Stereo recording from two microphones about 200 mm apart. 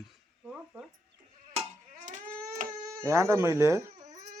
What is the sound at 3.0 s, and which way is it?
Speech, 15° right (ahead or behind).